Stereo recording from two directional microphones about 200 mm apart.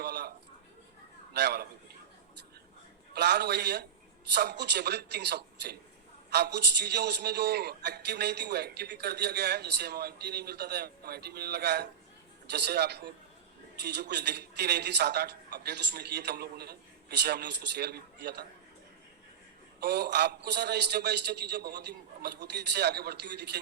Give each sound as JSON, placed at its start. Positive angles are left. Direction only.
{"t": 0.0, "sound": "a sound", "side_deg": -55}
{"t": 3.1, "sound": "a man's voice", "side_deg": -55}
{"t": 19.8, "sound": "a man's voice", "side_deg": -55}